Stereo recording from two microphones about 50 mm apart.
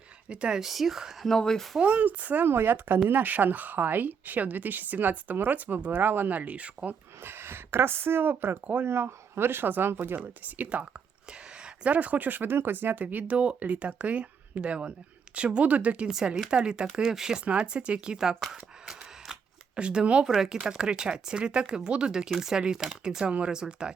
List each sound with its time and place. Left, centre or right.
0.3 s speech: centre
0.6 s speech: centre
1.3 s speech: centre
1.8 s a woman's voice: right
2.5 s a woman's voice: right
7.2 s a woman's voice: right
8.9 s speech: right
10.4 s a woman's voice: right
11.3 s a sound: centre
11.9 s speech: right; by 17.4 s centre
17.4 s speech: right
18.9 s camera: centre
20.2 s speech: centre